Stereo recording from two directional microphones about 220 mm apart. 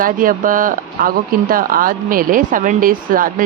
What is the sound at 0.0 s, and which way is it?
Speech, 40° right (ahead or behind).